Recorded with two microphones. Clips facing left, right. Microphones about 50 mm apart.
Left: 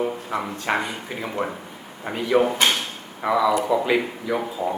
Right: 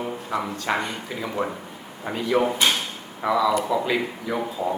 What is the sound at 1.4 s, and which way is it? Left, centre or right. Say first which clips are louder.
Speech: even; left.